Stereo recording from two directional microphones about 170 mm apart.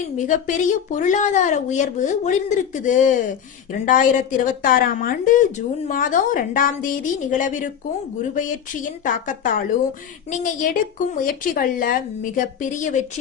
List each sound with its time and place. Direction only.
0.2 s a woman's voice: 50° left (ahead or behind)